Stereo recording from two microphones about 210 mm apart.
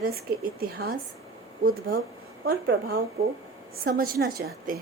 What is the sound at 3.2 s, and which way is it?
A woman's voice, 45° right (ahead or behind).